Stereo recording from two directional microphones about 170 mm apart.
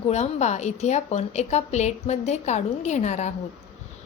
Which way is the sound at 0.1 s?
40° left (ahead or behind).